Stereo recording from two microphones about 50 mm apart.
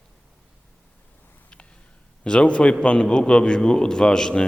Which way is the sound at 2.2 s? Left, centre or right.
Left.